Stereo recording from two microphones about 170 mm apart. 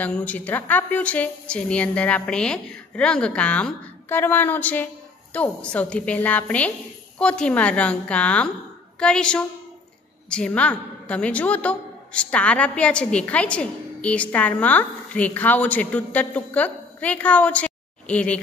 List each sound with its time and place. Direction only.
0.0 s a woman's voice: 10° left (ahead or behind)